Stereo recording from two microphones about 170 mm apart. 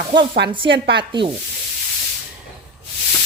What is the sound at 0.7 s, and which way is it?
Speech, 90° right.